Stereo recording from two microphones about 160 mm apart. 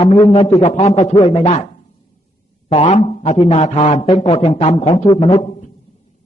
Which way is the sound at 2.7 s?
35° left (ahead or behind).